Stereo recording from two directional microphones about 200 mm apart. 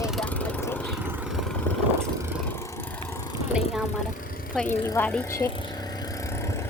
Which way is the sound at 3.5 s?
5° right (ahead or behind).